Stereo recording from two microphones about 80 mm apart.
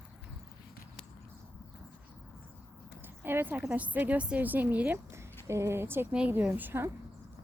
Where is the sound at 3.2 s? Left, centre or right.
Right.